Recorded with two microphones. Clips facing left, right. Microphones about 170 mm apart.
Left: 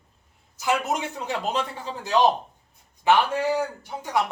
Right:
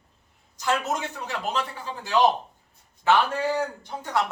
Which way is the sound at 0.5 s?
10° left (ahead or behind).